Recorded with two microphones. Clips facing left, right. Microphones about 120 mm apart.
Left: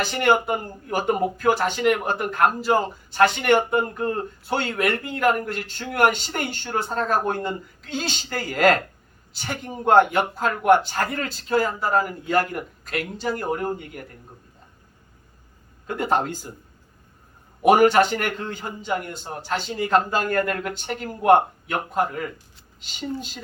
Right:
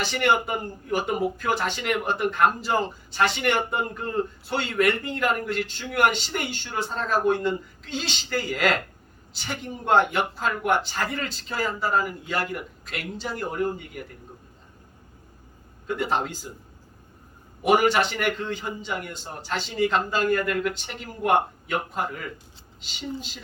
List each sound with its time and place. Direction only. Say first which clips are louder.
0.0 s a man's voice: left 3 dB; 45° left (ahead or behind)
1.4 s speech: left 5 dB; centre (ahead or behind)
2.0 s a man's voice: even; 45° left (ahead or behind)
2.4 s speech: left 4 dB; centre (ahead or behind)
3.1 s a man's voice: left 6 dB; 50° left (ahead or behind)
3.7 s speech: left 5 dB; centre (ahead or behind)
4.5 s a man's voice: even; 50° left (ahead or behind)
4.9 s speech: right 1 dB; centre (ahead or behind)
5.5 s a man's voice: right 1 dB; 45° left (ahead or behind)
13.1 s speech: left 6 dB; centre (ahead or behind)
13.4 s a man's voice: left 1 dB; 50° left (ahead or behind)
15.9 s a man's voice: left 3 dB; 45° left (ahead or behind)
17.6 s a man's voice: left 5 dB; 45° left (ahead or behind)